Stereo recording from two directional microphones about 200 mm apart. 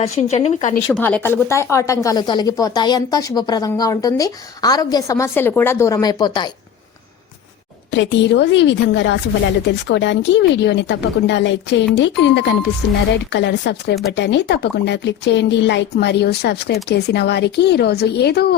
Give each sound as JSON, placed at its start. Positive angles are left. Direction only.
{"t": 0.0, "sound": "speech", "side_deg": 35}
{"t": 0.9, "sound": "speech", "side_deg": 5}
{"t": 7.9, "sound": "speech", "side_deg": 65}